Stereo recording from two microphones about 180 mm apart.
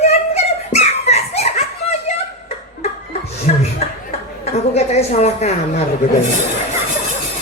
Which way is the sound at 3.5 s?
45° left (ahead or behind).